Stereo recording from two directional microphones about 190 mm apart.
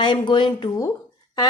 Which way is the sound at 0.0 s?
25° left (ahead or behind).